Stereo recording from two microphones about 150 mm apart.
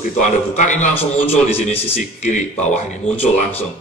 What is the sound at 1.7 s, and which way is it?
Speech, 15° left (ahead or behind).